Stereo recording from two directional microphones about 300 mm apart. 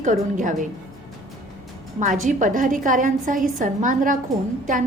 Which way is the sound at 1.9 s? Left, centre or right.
Right.